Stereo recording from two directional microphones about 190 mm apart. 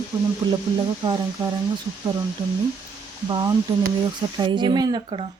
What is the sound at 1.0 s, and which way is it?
Speech, 25° right (ahead or behind).